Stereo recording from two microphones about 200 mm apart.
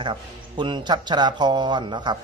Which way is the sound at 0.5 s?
25° right (ahead or behind).